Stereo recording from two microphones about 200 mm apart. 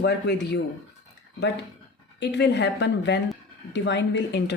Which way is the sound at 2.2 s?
60° left (ahead or behind).